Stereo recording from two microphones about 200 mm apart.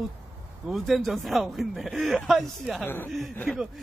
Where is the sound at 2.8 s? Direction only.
10° left (ahead or behind).